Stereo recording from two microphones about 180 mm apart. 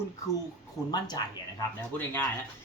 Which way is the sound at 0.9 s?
25° left (ahead or behind).